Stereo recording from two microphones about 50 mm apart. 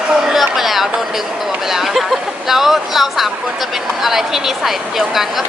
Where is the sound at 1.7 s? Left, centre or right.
Centre.